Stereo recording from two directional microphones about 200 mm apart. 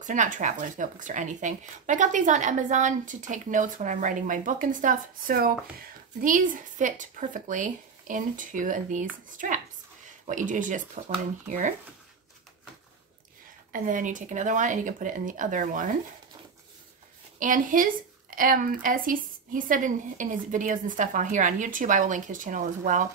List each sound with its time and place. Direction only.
0.0 s speech: 40° right (ahead or behind)
13.7 s speech: 40° right (ahead or behind)
17.4 s speech: 40° right (ahead or behind)